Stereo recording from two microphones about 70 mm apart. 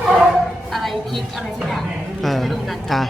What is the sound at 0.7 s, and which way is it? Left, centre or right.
Speech, centre.